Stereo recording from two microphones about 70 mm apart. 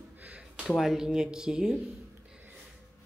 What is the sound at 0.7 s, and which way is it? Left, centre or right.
Speech, centre.